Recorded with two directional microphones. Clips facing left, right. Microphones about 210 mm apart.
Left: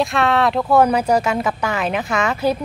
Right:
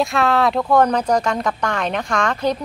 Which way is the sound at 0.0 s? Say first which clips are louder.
Even; centre (ahead or behind).